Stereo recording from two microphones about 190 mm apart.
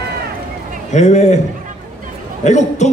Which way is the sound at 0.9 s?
35° left (ahead or behind).